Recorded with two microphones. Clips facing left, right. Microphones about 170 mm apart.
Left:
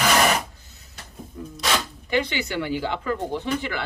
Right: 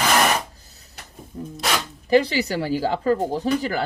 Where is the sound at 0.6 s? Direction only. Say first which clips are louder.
Even; 35° right (ahead or behind).